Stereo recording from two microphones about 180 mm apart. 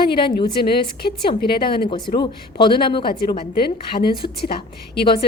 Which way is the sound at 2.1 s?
25° left (ahead or behind).